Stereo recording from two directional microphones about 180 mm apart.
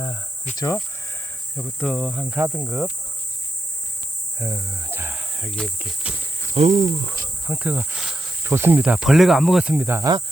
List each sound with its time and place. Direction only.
0.5 s speech: 15° left (ahead or behind)
1.5 s speech: centre (ahead or behind)
4.4 s speech: 20° right (ahead or behind); by 6.1 s centre (ahead or behind)
6.5 s speech: 40° right (ahead or behind)
7.2 s speech: 10° right (ahead or behind)